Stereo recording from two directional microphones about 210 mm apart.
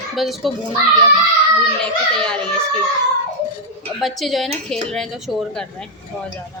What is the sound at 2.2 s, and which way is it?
Speech, 5° left (ahead or behind).